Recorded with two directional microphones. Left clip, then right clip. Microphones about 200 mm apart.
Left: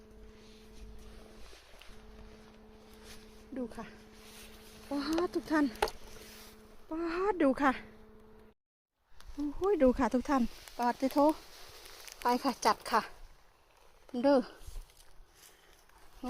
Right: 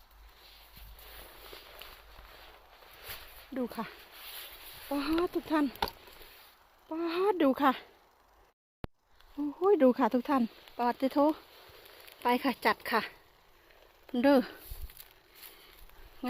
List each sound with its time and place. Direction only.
3.5 s speech: 20° right (ahead or behind)
4.9 s speech: centre (ahead or behind)
6.9 s speech: centre (ahead or behind)
9.6 s speech: 5° right (ahead or behind)